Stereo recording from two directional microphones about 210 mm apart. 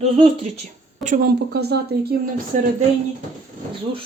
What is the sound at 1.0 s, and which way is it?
A woman's voice, 45° right (ahead or behind).